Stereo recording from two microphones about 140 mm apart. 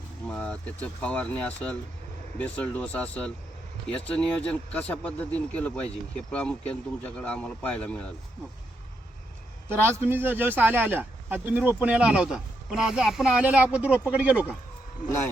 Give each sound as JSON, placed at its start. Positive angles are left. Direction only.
{"t": 0.3, "sound": "speech", "side_deg": 5}
{"t": 9.6, "sound": "speech", "side_deg": -15}